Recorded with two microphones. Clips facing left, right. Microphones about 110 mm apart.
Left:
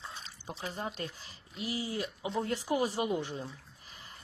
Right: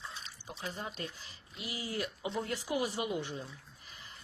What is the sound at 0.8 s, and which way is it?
Speech, 35° left (ahead or behind).